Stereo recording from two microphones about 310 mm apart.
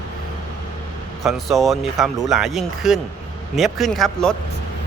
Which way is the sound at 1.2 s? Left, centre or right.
Centre.